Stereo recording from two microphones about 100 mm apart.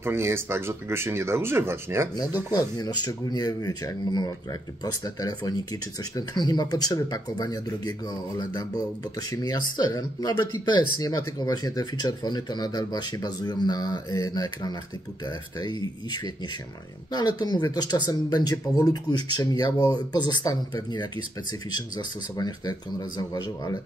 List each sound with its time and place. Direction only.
0.0 s speech: 25° right (ahead or behind)
2.5 s speech: 40° left (ahead or behind)
21.7 s speech: 45° left (ahead or behind)